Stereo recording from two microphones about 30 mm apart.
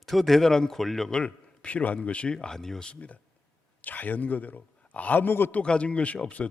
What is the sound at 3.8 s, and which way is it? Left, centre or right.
A man's voice, left.